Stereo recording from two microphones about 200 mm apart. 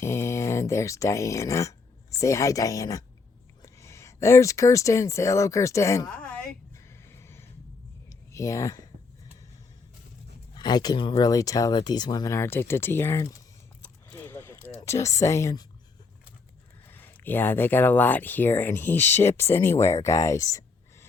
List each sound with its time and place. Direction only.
0.0 s speech: 15° left (ahead or behind)
6.1 s a sound: 5° left (ahead or behind)
8.3 s speech: 15° left (ahead or behind)
10.5 s speech: 20° left (ahead or behind)
14.1 s a sound: 10° left (ahead or behind)
14.8 s speech: 15° left (ahead or behind)
16.8 s speech: 10° left (ahead or behind)